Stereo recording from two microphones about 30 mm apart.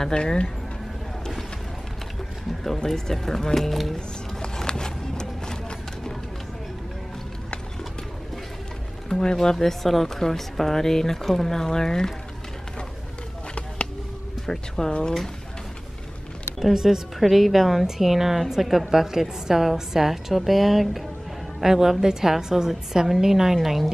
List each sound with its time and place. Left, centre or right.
0.0 s speech: left
2.9 s speech: centre
3.9 s a sound: left
9.1 s speech: left
14.4 s speech: centre
14.9 s speech: left
16.7 s a woman's voice: centre
17.2 s a woman's voice: centre